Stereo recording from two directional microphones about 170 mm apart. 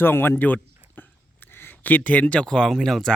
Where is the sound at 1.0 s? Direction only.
10° left (ahead or behind).